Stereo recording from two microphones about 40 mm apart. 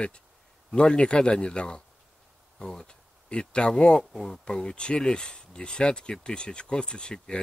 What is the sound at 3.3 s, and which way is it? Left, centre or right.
Speech, left.